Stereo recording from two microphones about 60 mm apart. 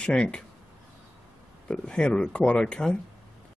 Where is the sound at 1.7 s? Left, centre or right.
Centre.